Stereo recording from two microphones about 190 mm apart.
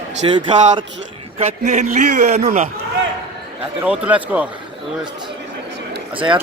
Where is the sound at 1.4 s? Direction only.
40° right (ahead or behind).